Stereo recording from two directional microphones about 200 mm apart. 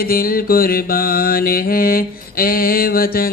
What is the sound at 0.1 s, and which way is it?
Mantra, 45° left (ahead or behind).